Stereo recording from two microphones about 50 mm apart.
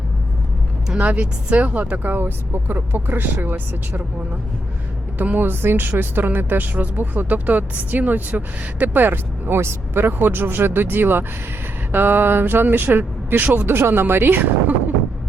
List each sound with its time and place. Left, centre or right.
0.9 s speech: right
2.1 s speech: right
5.1 s speech: right
5.5 s speech: right